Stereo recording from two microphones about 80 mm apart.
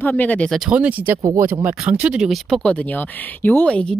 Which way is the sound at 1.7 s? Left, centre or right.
Centre.